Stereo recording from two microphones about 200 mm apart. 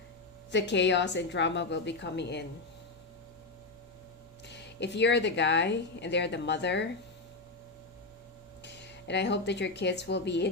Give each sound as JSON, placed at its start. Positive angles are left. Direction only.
{"t": 0.5, "sound": "speech", "side_deg": 60}
{"t": 4.4, "sound": "speech", "side_deg": 60}
{"t": 8.6, "sound": "speech", "side_deg": 60}